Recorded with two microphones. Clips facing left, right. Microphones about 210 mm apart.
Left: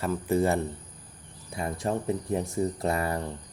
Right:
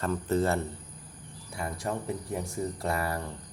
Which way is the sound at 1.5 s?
25° left (ahead or behind).